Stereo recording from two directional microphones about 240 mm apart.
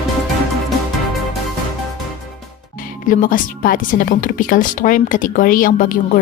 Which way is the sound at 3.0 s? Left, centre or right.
Left.